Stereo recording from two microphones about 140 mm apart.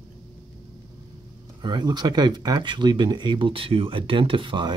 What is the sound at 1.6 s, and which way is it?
Speech, 30° right (ahead or behind).